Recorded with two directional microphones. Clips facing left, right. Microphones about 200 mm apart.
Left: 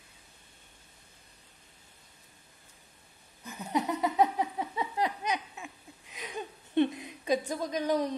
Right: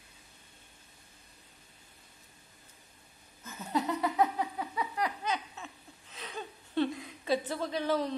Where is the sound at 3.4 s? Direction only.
15° left (ahead or behind).